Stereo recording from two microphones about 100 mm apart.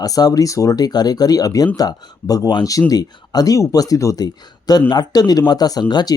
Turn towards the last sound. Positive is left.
turn(degrees=45)  # may be behind; listen again after turning